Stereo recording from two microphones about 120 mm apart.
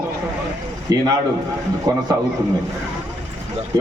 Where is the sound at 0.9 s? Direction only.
30° right (ahead or behind).